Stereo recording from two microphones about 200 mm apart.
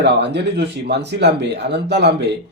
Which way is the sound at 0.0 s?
60° right (ahead or behind).